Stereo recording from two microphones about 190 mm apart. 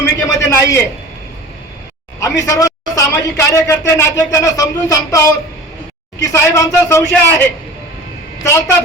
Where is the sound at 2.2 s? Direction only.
15° left (ahead or behind).